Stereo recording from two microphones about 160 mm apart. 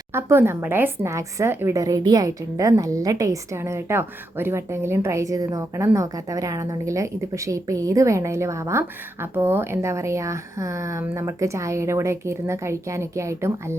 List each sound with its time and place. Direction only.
0.1 s a woman's voice: 15° right (ahead or behind)